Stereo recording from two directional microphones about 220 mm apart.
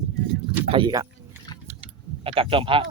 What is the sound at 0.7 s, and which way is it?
Speech, 20° right (ahead or behind).